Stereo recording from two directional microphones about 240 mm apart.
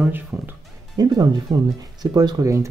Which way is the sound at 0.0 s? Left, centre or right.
Centre.